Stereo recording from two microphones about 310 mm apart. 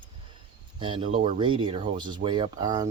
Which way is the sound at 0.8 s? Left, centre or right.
Centre.